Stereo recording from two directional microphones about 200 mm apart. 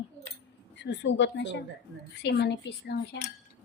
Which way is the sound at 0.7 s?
65° left (ahead or behind).